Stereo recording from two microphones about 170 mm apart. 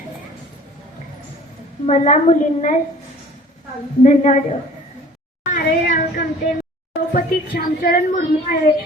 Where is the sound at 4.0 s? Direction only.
45° left (ahead or behind).